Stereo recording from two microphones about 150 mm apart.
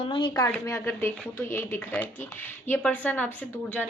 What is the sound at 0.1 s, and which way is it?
Speech, 30° left (ahead or behind).